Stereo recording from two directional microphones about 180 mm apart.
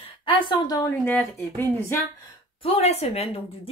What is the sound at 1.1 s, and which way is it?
Speech, 10° left (ahead or behind).